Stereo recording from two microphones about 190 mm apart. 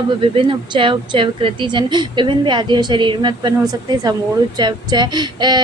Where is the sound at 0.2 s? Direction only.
25° right (ahead or behind).